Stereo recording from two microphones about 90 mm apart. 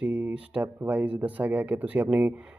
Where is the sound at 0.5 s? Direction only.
15° right (ahead or behind).